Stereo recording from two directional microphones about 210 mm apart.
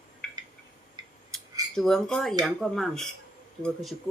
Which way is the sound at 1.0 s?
20° right (ahead or behind).